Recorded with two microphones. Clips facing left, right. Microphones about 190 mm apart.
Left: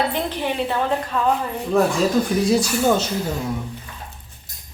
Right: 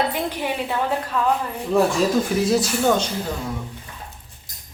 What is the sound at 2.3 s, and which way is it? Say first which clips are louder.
Speech: left 1 dB; 5° right (ahead or behind).